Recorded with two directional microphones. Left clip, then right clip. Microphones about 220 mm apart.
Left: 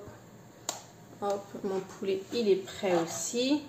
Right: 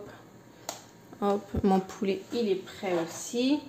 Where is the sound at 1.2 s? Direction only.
35° right (ahead or behind).